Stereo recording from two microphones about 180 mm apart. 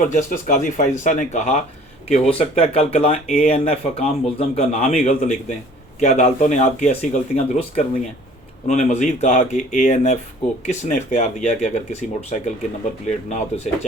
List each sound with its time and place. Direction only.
0.0 s speech: 50° left (ahead or behind)